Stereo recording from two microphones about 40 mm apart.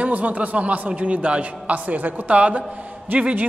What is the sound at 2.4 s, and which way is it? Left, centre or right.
A man's voice, right.